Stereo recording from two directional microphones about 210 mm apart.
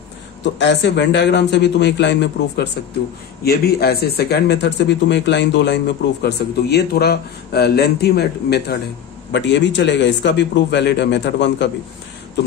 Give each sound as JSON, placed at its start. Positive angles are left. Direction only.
{"t": 0.4, "sound": "a man's voice", "side_deg": 55}